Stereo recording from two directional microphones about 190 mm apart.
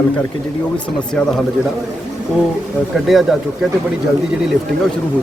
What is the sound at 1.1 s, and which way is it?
Speech, centre (ahead or behind).